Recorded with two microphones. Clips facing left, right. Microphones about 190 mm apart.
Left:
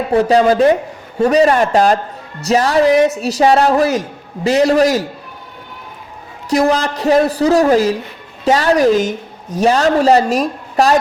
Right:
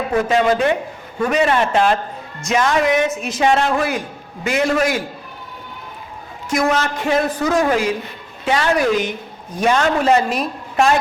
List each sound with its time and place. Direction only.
0.1 s a man's voice: 35° left (ahead or behind)
6.5 s a man's voice: 35° left (ahead or behind)